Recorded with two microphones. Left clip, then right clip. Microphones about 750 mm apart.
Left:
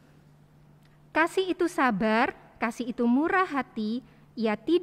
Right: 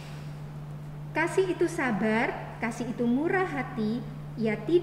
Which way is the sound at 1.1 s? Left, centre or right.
Left.